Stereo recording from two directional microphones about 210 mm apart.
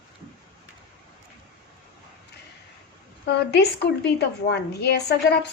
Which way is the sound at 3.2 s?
55° left (ahead or behind).